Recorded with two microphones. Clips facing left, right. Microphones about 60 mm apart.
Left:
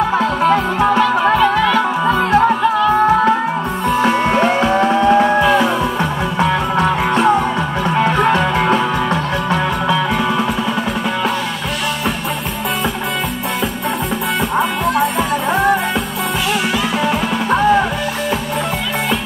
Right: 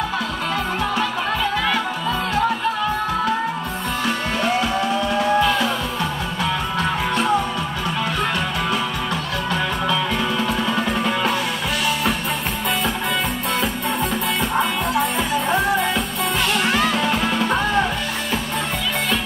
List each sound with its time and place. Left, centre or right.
0.7 s music: left
4.0 s music: left
5.4 s music: left
6.8 s music: left